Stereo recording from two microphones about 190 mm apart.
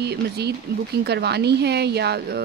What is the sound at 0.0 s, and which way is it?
Speech, 60° right (ahead or behind).